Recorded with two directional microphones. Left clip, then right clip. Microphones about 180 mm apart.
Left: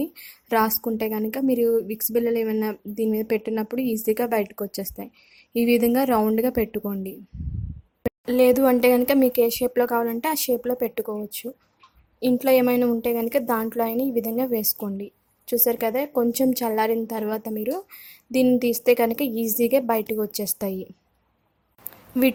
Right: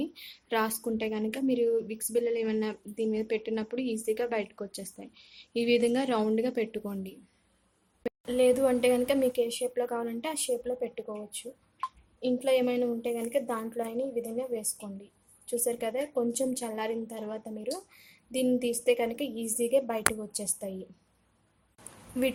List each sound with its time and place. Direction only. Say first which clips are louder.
0.0 s speech: left 6 dB; 40° left (ahead or behind)
8.0 s speech: left 7 dB; 45° left (ahead or behind)